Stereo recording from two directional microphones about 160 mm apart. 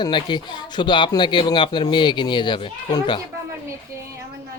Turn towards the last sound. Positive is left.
turn(degrees=30)  # may be behind; listen again after turning